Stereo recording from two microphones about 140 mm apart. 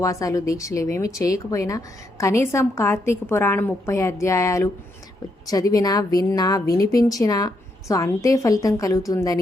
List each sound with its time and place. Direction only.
0.0 s speech: 25° left (ahead or behind)